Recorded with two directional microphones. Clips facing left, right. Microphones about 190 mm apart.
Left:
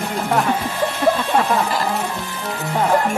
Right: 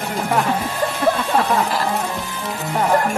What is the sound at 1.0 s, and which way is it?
Speech, centre (ahead or behind).